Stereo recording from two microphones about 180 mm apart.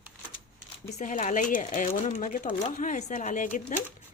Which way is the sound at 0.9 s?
45° left (ahead or behind).